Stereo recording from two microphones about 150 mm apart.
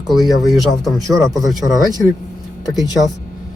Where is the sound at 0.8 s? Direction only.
Centre (ahead or behind).